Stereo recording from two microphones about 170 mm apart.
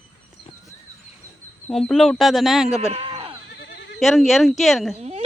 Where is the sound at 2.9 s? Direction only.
35° right (ahead or behind).